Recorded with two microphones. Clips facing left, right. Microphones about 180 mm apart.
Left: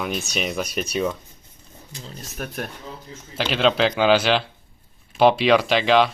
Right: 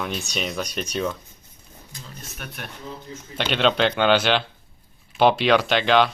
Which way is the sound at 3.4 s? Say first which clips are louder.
Left 1 dB; centre (ahead or behind).